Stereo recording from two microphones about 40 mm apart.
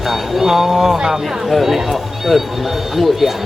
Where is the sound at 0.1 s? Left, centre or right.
Centre.